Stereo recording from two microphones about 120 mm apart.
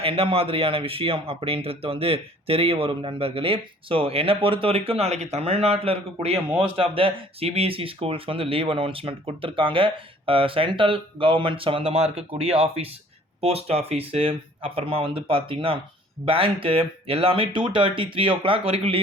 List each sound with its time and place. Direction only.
0.0 s speech: 50° right (ahead or behind)